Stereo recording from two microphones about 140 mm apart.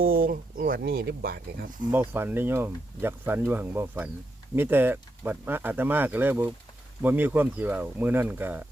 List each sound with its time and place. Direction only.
0.0 s speech: 90° right
1.9 s speech: 15° right (ahead or behind)